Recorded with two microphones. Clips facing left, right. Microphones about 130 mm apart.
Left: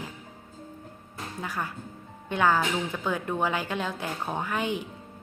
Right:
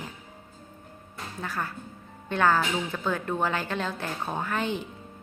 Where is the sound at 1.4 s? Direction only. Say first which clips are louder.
Right 1 dB; 15° left (ahead or behind).